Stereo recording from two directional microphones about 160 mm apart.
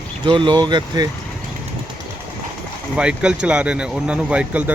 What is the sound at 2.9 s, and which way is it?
Speech, 5° right (ahead or behind).